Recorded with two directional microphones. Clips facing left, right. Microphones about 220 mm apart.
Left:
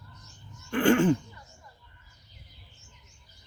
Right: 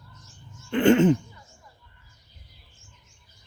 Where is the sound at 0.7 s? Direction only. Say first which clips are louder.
Right 4 dB; 20° right (ahead or behind).